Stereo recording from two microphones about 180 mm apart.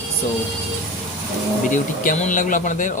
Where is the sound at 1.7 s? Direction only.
45° left (ahead or behind).